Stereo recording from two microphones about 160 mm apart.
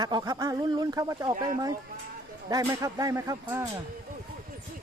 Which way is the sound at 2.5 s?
20° right (ahead or behind).